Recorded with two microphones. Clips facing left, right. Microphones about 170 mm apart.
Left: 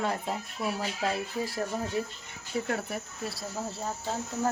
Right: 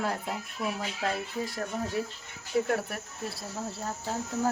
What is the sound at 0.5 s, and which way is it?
Speech, 35° left (ahead or behind).